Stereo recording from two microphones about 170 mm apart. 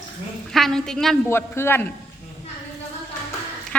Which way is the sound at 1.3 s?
15° left (ahead or behind).